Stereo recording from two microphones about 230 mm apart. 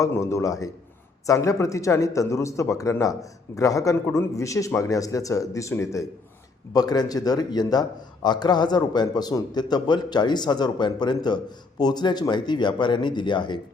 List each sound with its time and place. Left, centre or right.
0.0 s speech: centre